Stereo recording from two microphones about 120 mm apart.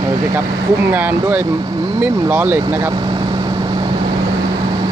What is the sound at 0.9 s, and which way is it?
Speech, 15° right (ahead or behind).